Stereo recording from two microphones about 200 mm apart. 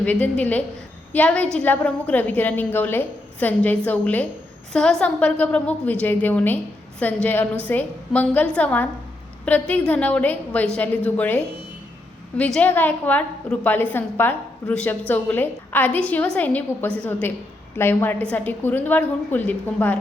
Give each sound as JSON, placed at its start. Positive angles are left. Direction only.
{"t": 0.0, "sound": "a woman's voice", "side_deg": 5}